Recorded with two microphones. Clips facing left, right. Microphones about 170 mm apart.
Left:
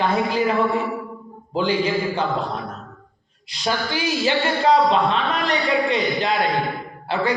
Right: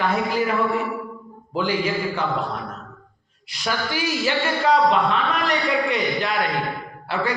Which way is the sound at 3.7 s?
20° left (ahead or behind).